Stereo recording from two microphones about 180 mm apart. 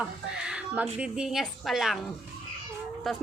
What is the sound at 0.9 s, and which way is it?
Speech, 5° right (ahead or behind).